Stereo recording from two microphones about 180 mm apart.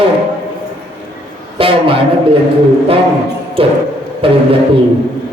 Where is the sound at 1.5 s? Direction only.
30° right (ahead or behind).